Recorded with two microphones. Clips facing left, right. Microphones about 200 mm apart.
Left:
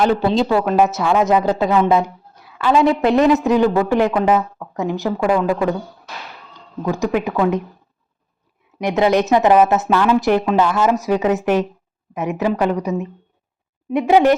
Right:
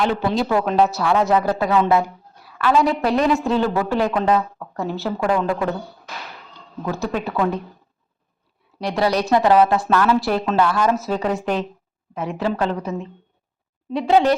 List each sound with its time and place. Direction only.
0.2 s a woman's voice: 25° left (ahead or behind)
0.4 s a woman's voice: 5° left (ahead or behind)
0.9 s a woman's voice: 20° left (ahead or behind)
8.8 s a woman's voice: 20° left (ahead or behind)